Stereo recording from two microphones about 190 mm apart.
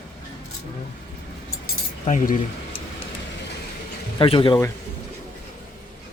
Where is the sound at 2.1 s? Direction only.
40° left (ahead or behind).